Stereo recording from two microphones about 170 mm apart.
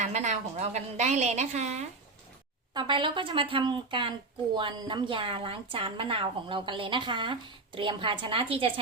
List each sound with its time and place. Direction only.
0.0 s speech: 45° right (ahead or behind)
2.7 s speech: 30° right (ahead or behind)